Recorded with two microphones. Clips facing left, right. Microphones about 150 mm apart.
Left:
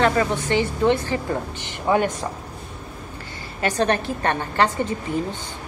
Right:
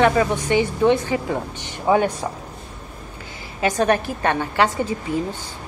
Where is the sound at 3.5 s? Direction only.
10° right (ahead or behind).